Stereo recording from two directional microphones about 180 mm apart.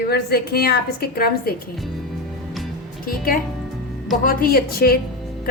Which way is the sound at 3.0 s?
55° left (ahead or behind).